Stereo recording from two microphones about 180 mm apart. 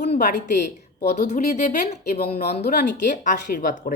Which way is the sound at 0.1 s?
45° left (ahead or behind).